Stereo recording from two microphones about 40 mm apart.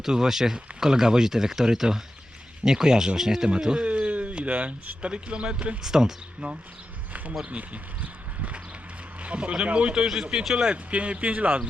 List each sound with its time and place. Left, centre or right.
0.0 s speech: centre
3.8 s speech: right
5.8 s speech: centre
6.4 s speech: right
9.2 s speech: right
10.1 s speech: centre
10.9 s speech: right